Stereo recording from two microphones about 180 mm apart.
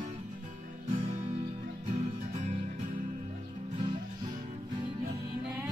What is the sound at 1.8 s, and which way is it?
Music, 40° right (ahead or behind).